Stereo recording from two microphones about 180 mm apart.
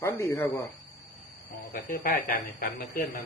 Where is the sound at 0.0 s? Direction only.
15° left (ahead or behind).